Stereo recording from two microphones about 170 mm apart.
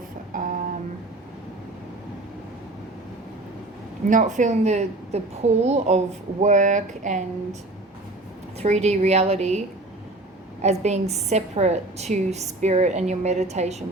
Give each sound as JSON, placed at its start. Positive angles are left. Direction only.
{"t": 0.3, "sound": "music", "side_deg": -50}
{"t": 4.0, "sound": "a woman's voice", "side_deg": -50}
{"t": 8.5, "sound": "a woman's voice", "side_deg": -40}